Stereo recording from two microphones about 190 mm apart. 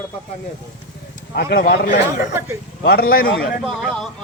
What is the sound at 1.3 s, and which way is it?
A man's voice, 55° left (ahead or behind).